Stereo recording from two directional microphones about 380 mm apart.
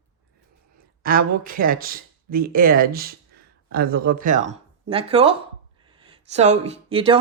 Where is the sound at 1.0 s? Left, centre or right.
Right.